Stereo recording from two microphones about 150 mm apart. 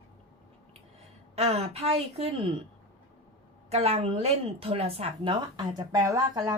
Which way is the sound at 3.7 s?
45° right (ahead or behind).